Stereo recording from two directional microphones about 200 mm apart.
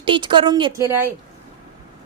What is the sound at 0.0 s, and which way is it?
Speech, 25° right (ahead or behind).